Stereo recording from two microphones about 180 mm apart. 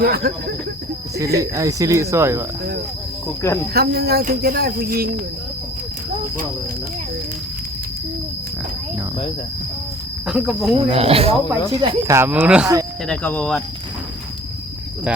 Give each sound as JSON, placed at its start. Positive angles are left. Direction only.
{"t": 0.0, "sound": "speech", "side_deg": -60}
{"t": 1.4, "sound": "speech", "side_deg": -20}
{"t": 3.4, "sound": "speech", "side_deg": 15}
{"t": 3.8, "sound": "speech", "side_deg": -60}
{"t": 10.2, "sound": "speech", "side_deg": -5}
{"t": 10.8, "sound": "speech", "side_deg": -35}
{"t": 11.7, "sound": "speech", "side_deg": -20}
{"t": 13.1, "sound": "speech", "side_deg": 5}